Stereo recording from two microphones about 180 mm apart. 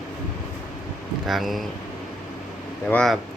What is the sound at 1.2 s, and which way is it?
Speech, centre (ahead or behind).